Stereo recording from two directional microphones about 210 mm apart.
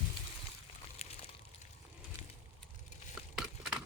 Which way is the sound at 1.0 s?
30° left (ahead or behind).